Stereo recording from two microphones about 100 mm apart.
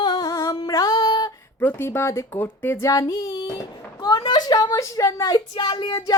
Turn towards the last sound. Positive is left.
turn(degrees=50)  # may be behind; listen again after turning